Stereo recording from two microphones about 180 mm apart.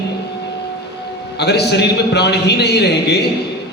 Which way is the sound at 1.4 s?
65° left (ahead or behind).